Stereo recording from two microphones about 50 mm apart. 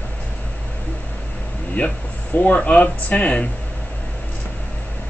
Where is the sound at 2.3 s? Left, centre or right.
Left.